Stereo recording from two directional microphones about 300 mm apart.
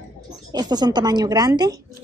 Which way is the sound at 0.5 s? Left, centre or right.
Centre.